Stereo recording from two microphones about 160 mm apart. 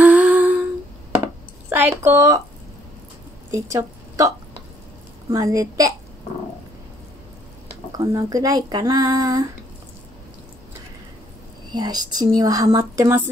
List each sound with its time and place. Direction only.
0.0 s humming: 10° right (ahead or behind)
1.2 s a sound: 15° right (ahead or behind)
3.5 s a woman's voice: 20° right (ahead or behind)
5.3 s speech: 20° right (ahead or behind)
8.0 s speech: 25° right (ahead or behind)
11.7 s speech: 25° right (ahead or behind)